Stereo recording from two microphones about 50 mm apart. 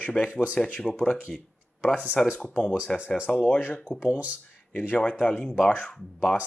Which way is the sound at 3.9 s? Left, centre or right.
Centre.